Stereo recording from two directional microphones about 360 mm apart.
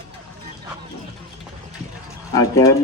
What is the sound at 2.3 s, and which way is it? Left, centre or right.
Speech, centre.